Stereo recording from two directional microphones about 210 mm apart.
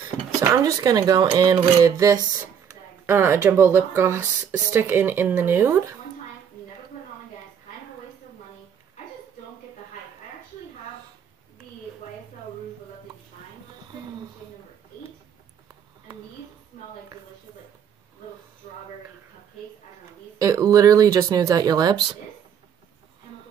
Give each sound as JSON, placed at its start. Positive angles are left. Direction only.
{"t": 0.4, "sound": "speech", "side_deg": -15}
{"t": 20.3, "sound": "speech", "side_deg": -15}